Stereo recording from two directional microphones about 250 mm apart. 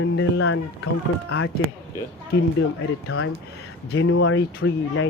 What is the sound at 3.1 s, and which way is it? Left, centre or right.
Speech, left.